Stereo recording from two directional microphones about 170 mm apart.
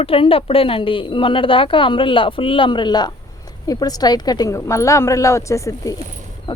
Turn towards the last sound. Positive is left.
turn(degrees=20)  # may be behind; listen again after turning